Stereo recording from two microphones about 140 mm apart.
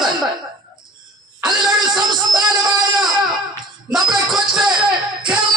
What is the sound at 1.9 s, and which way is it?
Music, 30° right (ahead or behind).